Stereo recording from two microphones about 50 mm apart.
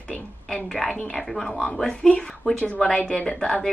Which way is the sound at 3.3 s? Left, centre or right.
Centre.